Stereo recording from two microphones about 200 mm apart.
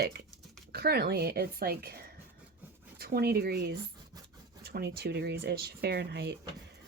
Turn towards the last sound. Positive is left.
turn(degrees=-55)  # may be behind; listen again after turning